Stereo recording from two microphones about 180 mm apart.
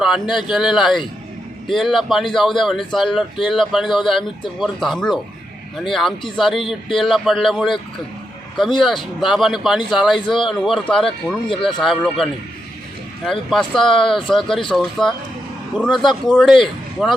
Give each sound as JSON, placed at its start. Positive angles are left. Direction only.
{"t": 0.0, "sound": "speech", "side_deg": 0}
{"t": 8.8, "sound": "speech", "side_deg": 0}
{"t": 10.2, "sound": "speech", "side_deg": 25}
{"t": 10.4, "sound": "speech", "side_deg": 0}
{"t": 13.5, "sound": "speech", "side_deg": 0}